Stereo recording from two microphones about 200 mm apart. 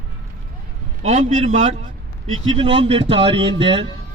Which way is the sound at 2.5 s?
25° right (ahead or behind).